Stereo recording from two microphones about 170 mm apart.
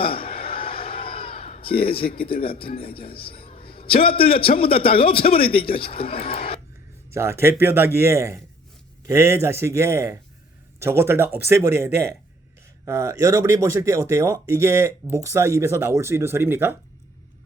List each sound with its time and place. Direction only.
0.0 s a sound: 30° left (ahead or behind)
3.1 s a man's voice: 30° left (ahead or behind)
7.1 s speech: 15° right (ahead or behind)